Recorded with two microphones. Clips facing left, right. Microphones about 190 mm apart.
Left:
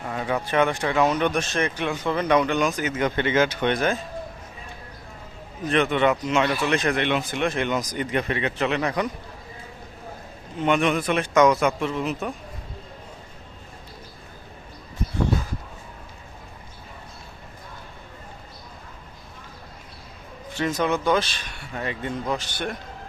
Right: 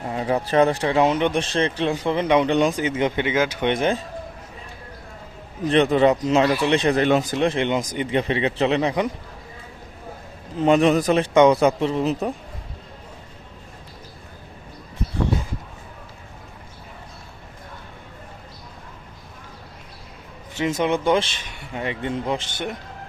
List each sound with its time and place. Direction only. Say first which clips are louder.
0.0 s speech: right 3 dB; 30° right (ahead or behind)
2.9 s speech: right 1 dB; 15° right (ahead or behind)
5.6 s speech: right 4 dB; 35° right (ahead or behind)
7.3 s speech: right 4 dB; 30° right (ahead or behind)
10.6 s speech: right 5 dB; 35° right (ahead or behind)
20.6 s speech: right 2 dB; 25° right (ahead or behind)